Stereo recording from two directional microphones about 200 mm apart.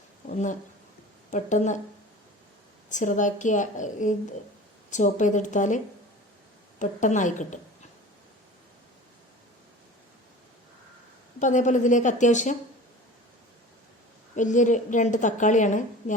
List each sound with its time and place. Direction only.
0.3 s a woman's voice: 40° left (ahead or behind)
2.9 s a woman's voice: 40° left (ahead or behind)
11.3 s a woman's voice: 40° left (ahead or behind)
14.3 s a woman's voice: 40° left (ahead or behind)